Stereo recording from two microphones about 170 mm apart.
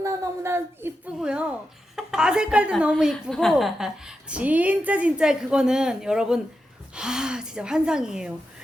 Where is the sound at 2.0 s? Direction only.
5° right (ahead or behind).